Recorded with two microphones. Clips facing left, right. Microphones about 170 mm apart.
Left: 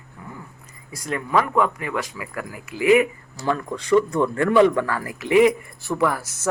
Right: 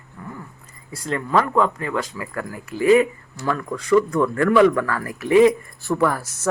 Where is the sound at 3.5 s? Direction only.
25° left (ahead or behind).